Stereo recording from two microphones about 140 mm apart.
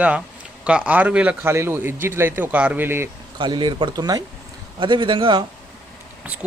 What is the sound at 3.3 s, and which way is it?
Speech, 35° right (ahead or behind).